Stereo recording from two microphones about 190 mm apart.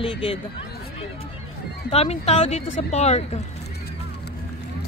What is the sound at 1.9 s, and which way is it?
Speech, 35° left (ahead or behind).